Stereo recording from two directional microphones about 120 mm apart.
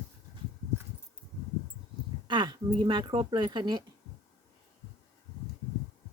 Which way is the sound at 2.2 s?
40° right (ahead or behind).